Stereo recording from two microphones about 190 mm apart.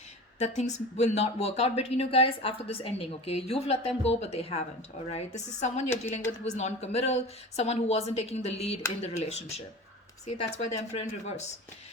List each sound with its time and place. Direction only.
0.3 s speech: 35° left (ahead or behind)